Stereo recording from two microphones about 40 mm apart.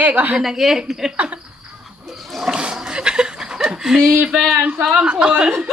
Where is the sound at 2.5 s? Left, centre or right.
Centre.